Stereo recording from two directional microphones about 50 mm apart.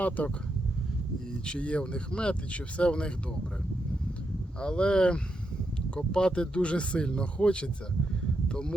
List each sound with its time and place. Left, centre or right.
0.2 s speech: left
1.5 s speech: left
4.6 s speech: centre